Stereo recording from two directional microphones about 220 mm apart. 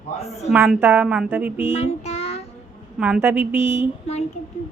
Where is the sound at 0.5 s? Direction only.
10° right (ahead or behind).